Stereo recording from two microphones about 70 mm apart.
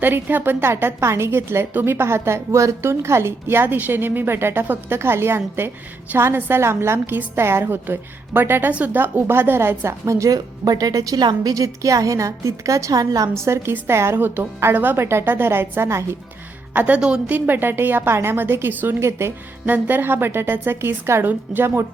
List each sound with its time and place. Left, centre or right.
0.0 s a woman's voice: right
9.0 s speech: right
13.4 s a woman's voice: right
16.7 s a woman's voice: right
18.9 s a woman's voice: right
19.6 s a woman's voice: right